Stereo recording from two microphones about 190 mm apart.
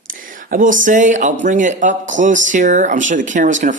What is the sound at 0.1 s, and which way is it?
Speech, 45° right (ahead or behind).